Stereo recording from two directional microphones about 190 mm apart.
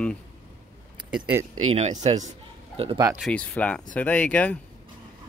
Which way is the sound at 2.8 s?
20° right (ahead or behind).